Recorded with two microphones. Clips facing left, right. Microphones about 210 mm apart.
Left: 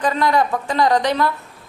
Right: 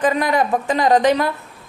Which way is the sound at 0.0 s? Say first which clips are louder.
Right 1 dB; 15° right (ahead or behind).